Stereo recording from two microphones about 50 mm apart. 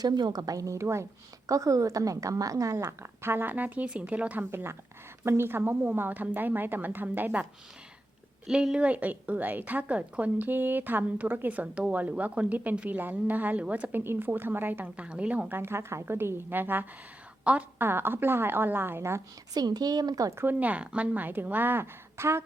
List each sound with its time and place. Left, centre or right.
0.6 s a woman's voice: right
1.5 s a woman's voice: right
4.5 s a woman's voice: right
5.8 s a woman's voice: right
8.4 s a woman's voice: centre
8.9 s a woman's voice: right
13.9 s a woman's voice: right
14.9 s speech: right
15.4 s a woman's voice: right
16.0 s a woman's voice: right
17.4 s a woman's voice: right
17.7 s a woman's voice: right
20.4 s a woman's voice: right
22.2 s a woman's voice: right